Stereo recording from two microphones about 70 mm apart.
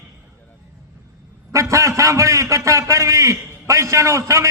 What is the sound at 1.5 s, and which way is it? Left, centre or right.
A man's voice, right.